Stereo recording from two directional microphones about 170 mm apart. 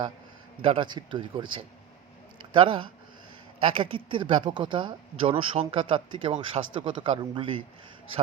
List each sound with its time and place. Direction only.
0.6 s speech: 30° right (ahead or behind)